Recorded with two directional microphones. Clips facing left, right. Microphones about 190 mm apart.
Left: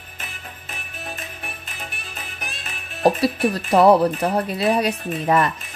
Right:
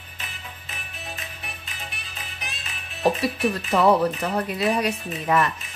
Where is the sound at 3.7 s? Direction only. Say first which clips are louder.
Left 5 dB; 35° left (ahead or behind).